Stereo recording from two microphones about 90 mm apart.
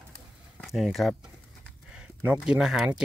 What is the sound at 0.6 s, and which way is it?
Speech, centre (ahead or behind).